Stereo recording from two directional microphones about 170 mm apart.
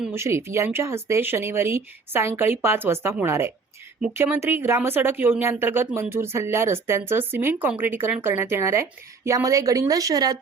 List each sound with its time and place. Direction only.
0.1 s a woman's voice: 15° right (ahead or behind)